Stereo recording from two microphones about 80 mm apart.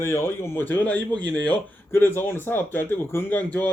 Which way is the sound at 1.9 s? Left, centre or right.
Left.